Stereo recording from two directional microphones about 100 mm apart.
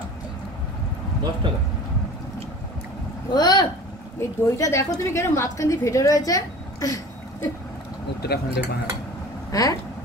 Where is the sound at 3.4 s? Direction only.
45° left (ahead or behind).